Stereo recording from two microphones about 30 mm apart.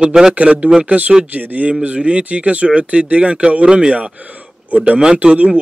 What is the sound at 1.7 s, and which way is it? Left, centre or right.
Speech, right.